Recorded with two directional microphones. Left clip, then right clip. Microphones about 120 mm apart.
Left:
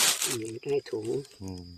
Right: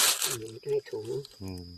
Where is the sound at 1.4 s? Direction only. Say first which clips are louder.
Even; centre (ahead or behind).